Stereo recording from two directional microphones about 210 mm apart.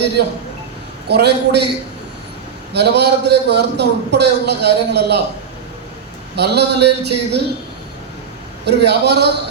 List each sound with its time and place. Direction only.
1.0 s a man's voice: 50° right (ahead or behind)
2.7 s a man's voice: 50° right (ahead or behind)
6.3 s a man's voice: 50° right (ahead or behind)
8.6 s a man's voice: 50° right (ahead or behind)